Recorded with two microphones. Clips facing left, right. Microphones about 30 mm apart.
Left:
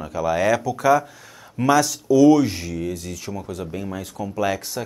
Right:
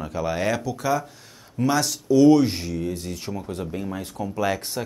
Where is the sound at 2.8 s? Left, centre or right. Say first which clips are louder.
Left 1 dB; left.